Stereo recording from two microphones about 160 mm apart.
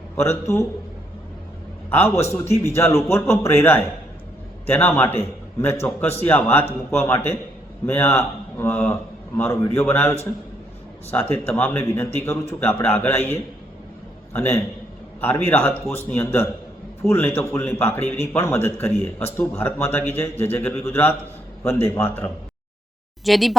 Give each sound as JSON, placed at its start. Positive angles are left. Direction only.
{"t": 0.2, "sound": "a man's voice", "side_deg": 15}
{"t": 1.9, "sound": "a man's voice", "side_deg": 15}
{"t": 14.3, "sound": "a man's voice", "side_deg": 15}
{"t": 23.2, "sound": "speech", "side_deg": 0}